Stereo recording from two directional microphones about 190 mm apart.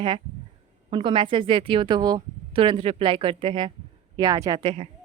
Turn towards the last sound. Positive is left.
turn(degrees=-30)  # may be behind; listen again after turning